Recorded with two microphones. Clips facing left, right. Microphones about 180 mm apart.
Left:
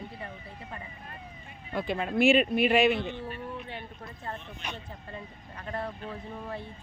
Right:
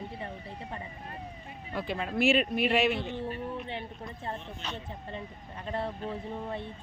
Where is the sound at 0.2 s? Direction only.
25° right (ahead or behind).